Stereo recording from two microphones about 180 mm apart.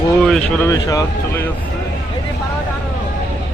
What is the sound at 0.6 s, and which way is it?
Speech, 20° left (ahead or behind).